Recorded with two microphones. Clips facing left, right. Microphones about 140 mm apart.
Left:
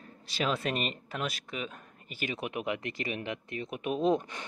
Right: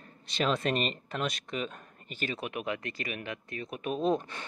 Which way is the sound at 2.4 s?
20° left (ahead or behind).